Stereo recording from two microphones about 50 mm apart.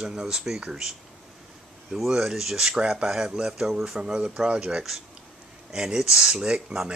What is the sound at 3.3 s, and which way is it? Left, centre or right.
Speech, centre.